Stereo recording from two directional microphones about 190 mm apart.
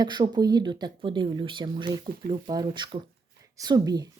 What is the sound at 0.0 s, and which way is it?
Speech, 25° right (ahead or behind).